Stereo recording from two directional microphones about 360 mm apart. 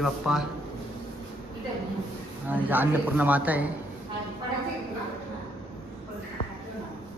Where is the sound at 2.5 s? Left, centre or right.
Centre.